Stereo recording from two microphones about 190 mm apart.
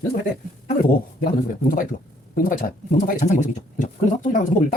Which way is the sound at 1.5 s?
45° left (ahead or behind).